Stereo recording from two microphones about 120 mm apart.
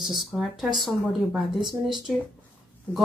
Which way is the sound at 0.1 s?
Centre (ahead or behind).